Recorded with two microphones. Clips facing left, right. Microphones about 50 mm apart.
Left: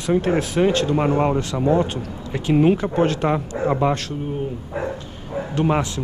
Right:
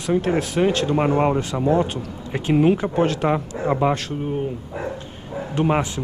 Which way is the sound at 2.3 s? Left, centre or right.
Centre.